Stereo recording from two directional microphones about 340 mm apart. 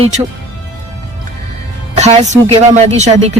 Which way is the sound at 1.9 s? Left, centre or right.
Centre.